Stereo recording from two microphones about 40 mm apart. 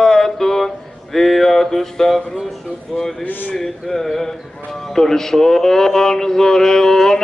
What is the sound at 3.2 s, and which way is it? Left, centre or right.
Speech, left.